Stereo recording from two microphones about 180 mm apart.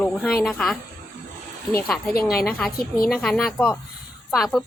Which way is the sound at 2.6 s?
5° left (ahead or behind).